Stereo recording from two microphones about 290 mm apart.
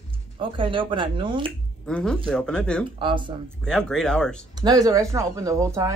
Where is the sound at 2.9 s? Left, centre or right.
Centre.